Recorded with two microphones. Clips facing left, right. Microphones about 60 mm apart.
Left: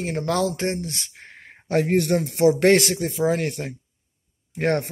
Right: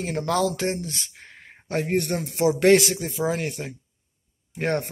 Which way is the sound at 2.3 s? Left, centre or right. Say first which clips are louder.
Even; left.